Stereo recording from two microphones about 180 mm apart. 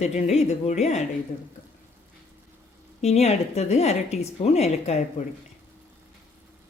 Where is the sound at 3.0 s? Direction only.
35° left (ahead or behind).